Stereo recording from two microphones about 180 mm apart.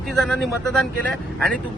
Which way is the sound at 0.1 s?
Centre (ahead or behind).